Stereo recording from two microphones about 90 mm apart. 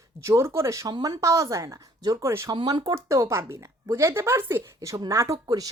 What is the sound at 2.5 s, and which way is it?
Speech, 60° right (ahead or behind).